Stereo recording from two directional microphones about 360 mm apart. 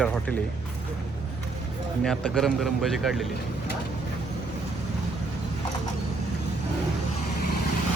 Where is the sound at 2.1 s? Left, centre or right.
Centre.